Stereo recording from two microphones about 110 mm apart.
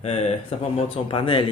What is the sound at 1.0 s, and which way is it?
Speech, 50° left (ahead or behind).